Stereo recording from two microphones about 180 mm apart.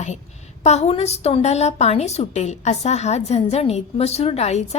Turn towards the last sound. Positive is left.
turn(degrees=35)  # may be behind; listen again after turning